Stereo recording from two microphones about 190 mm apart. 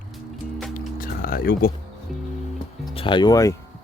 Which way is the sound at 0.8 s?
50° left (ahead or behind).